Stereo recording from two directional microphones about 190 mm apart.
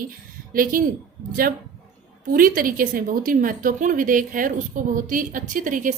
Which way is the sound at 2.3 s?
50° right (ahead or behind).